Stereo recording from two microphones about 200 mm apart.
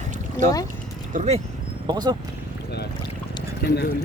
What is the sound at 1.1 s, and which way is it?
Speech, 35° right (ahead or behind).